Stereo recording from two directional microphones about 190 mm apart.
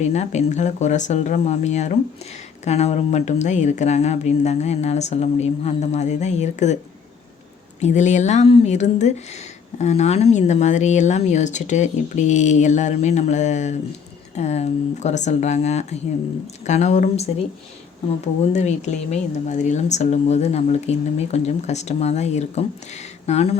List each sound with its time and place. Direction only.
0.0 s speech: 35° left (ahead or behind)
7.8 s speech: 40° left (ahead or behind)
18.5 s speech: 35° left (ahead or behind)